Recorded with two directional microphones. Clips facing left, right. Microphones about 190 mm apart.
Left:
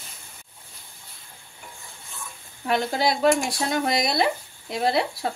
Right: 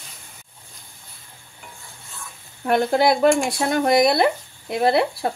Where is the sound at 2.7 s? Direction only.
55° right (ahead or behind).